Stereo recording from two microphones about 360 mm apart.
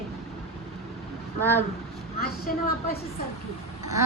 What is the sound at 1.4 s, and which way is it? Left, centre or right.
Speech, centre.